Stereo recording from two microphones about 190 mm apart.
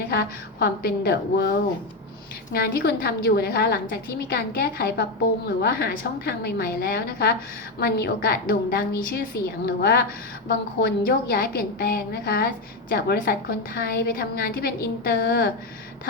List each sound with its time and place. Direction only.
0.1 s a woman's voice: 55° left (ahead or behind)